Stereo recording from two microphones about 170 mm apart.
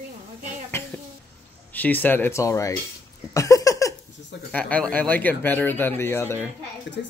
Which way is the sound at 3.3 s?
20° left (ahead or behind).